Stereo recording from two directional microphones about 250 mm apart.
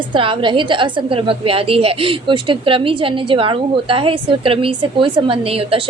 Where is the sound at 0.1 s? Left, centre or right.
Centre.